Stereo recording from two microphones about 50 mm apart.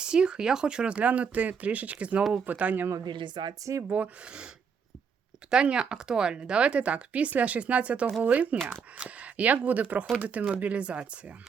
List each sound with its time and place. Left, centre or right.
0.0 s speech: centre; by 2.8 s right
3.6 s speech: right
3.8 s speech: right
5.5 s speech: centre